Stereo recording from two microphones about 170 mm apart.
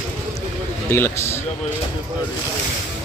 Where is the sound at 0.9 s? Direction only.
15° left (ahead or behind).